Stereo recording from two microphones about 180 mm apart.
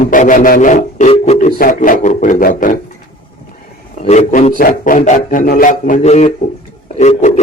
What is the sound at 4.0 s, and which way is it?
A man's voice, 40° left (ahead or behind).